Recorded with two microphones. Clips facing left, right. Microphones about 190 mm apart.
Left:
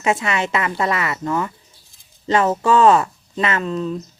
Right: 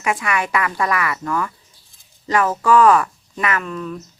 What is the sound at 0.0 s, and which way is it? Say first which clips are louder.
Speech: left 2 dB; 25° left (ahead or behind).